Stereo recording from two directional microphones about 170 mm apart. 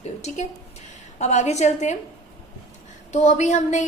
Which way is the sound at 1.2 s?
45° left (ahead or behind).